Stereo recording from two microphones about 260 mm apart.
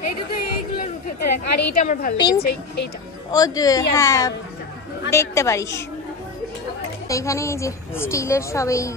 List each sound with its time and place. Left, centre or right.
0.3 s a sound: left
1.2 s a woman's voice: left
1.8 s a woman's voice: left
2.1 s a woman's voice: centre
2.4 s a woman's voice: left
3.3 s a woman's voice: centre
7.1 s a woman's voice: centre